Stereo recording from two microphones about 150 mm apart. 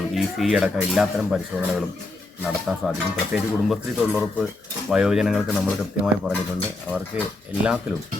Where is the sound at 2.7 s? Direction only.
5° right (ahead or behind).